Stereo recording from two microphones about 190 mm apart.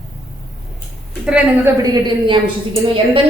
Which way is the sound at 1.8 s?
20° right (ahead or behind).